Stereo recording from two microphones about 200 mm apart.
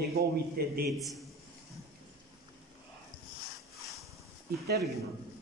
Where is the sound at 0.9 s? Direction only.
Centre (ahead or behind).